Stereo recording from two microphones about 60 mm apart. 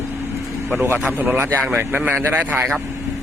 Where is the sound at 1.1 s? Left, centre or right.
Right.